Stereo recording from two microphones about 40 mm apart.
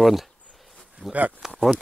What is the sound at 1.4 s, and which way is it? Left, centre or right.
Speech, centre.